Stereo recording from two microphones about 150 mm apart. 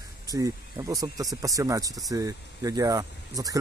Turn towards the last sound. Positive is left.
turn(degrees=-25)  # may be behind; listen again after turning